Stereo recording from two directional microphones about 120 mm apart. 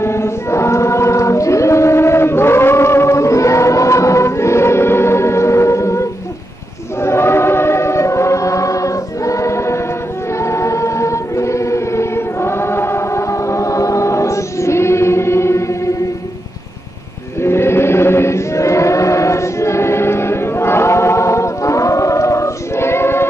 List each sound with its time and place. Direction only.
0.0 s choir: 20° left (ahead or behind)
17.4 s chant: 20° left (ahead or behind)